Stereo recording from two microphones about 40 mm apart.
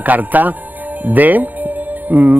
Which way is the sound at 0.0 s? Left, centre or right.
Right.